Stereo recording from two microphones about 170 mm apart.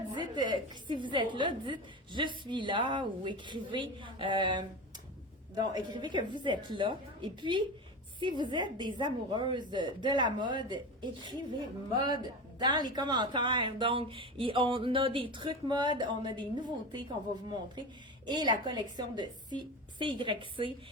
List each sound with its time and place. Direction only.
0.3 s speech: 25° right (ahead or behind)
18.3 s speech: 25° right (ahead or behind)